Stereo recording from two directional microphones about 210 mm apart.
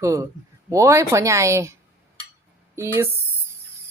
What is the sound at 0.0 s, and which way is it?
Speech, 15° right (ahead or behind).